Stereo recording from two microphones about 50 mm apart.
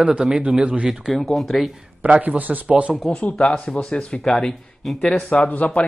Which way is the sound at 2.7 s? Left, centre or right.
Right.